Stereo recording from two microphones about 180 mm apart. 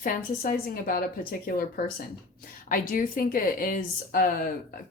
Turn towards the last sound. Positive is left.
turn(degrees=55)  # may be behind; listen again after turning